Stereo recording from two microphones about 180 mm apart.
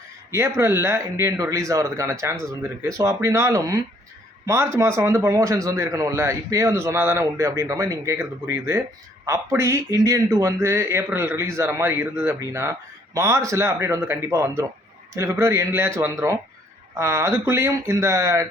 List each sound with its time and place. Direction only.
0.3 s a man's voice: 15° right (ahead or behind)